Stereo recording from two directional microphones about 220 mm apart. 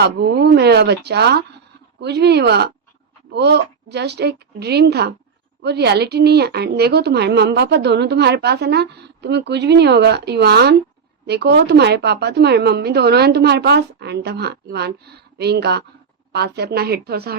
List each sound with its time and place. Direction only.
0.0 s a woman's voice: 50° right (ahead or behind)